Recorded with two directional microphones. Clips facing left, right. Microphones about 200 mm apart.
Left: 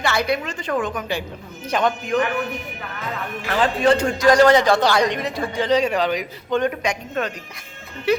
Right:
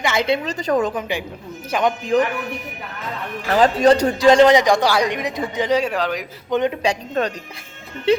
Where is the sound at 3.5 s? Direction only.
40° right (ahead or behind).